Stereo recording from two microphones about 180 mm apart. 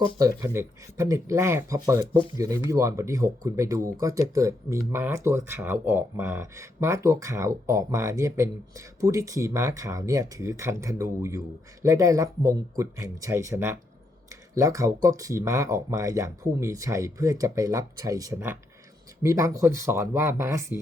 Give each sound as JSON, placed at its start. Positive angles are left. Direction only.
{"t": 0.2, "sound": "speech", "side_deg": -20}